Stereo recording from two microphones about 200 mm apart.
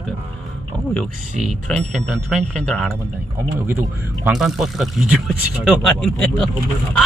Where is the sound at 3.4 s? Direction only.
10° right (ahead or behind).